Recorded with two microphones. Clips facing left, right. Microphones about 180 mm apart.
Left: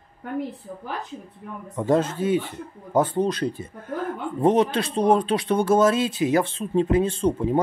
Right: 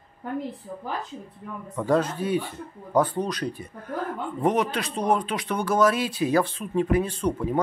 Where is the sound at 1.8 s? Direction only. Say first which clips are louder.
Left 2 dB; 25° left (ahead or behind).